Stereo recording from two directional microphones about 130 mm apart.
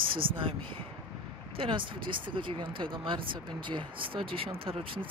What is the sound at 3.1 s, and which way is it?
Speech, 40° right (ahead or behind).